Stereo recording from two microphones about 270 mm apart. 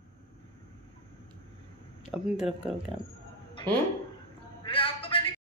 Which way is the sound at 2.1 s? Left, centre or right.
Centre.